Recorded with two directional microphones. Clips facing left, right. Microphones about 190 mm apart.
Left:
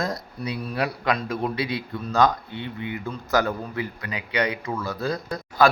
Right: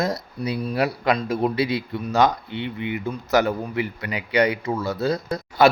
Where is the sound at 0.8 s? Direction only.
30° right (ahead or behind).